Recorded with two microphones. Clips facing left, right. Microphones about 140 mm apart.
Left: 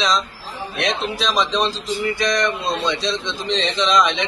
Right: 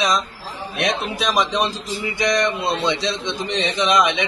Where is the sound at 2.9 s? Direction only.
65° right (ahead or behind).